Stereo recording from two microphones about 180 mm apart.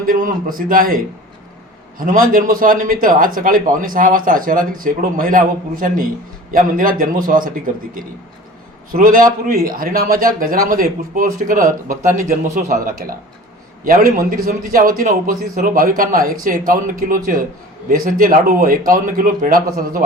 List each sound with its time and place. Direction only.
0.0 s speech: 50° right (ahead or behind)